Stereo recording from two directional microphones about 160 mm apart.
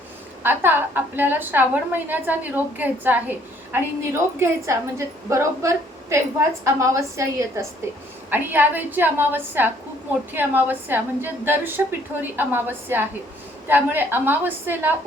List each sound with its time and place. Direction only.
0.4 s a woman's voice: 10° right (ahead or behind)